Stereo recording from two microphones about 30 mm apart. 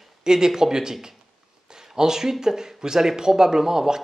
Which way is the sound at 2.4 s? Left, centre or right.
Centre.